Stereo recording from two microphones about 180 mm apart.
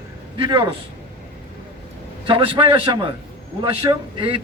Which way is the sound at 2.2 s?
30° right (ahead or behind).